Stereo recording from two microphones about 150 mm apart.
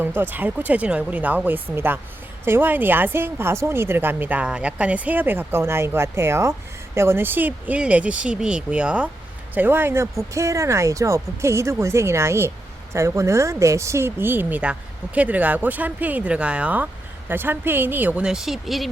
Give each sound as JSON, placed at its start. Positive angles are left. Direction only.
{"t": 0.0, "sound": "speech", "side_deg": -15}